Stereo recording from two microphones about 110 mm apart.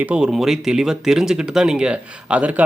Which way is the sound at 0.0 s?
10° right (ahead or behind).